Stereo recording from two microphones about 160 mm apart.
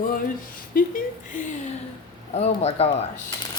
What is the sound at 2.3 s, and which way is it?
Speech, 40° left (ahead or behind).